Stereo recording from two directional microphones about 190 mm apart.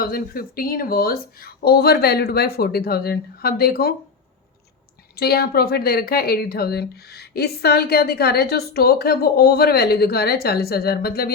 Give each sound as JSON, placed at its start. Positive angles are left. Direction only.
{"t": 0.0, "sound": "speech", "side_deg": 50}
{"t": 5.1, "sound": "speech", "side_deg": 55}